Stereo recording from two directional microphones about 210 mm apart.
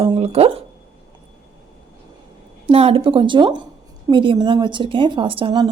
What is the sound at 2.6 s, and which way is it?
A woman's voice, 25° right (ahead or behind).